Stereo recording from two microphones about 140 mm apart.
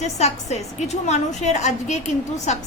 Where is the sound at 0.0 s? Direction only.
50° left (ahead or behind).